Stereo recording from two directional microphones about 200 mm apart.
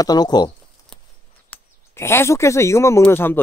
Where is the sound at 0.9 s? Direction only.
5° left (ahead or behind).